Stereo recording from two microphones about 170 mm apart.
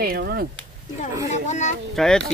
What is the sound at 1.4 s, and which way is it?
Speech, 45° left (ahead or behind).